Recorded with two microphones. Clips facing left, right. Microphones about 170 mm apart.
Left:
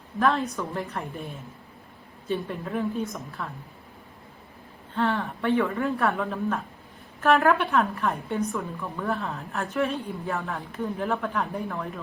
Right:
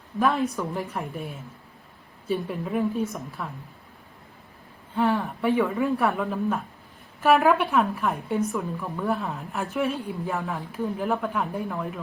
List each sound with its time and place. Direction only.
0.2 s a woman's voice: 10° right (ahead or behind)
0.5 s speech: centre (ahead or behind)
2.2 s speech: 5° right (ahead or behind)
4.9 s a woman's voice: 15° right (ahead or behind)
5.2 s a woman's voice: centre (ahead or behind)
9.3 s speech: centre (ahead or behind)